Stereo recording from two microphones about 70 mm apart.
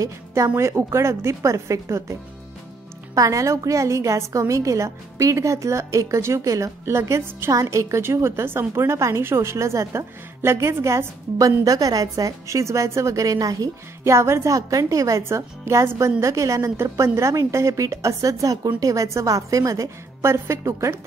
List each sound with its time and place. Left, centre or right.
0.3 s a woman's voice: right
3.2 s a woman's voice: right
6.9 s a woman's voice: right
14.0 s a woman's voice: right